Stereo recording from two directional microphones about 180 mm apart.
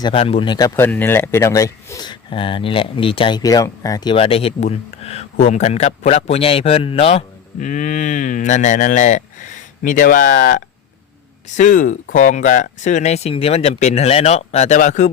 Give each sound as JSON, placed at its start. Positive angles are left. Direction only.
{"t": 0.0, "sound": "speech", "side_deg": 30}
{"t": 0.8, "sound": "speech", "side_deg": 10}